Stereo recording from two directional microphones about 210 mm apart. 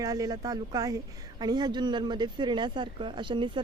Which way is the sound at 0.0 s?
15° right (ahead or behind).